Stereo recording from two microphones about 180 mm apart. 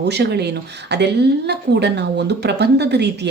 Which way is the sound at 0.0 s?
65° right (ahead or behind).